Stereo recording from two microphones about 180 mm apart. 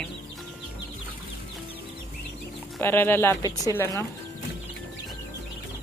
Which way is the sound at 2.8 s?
10° left (ahead or behind).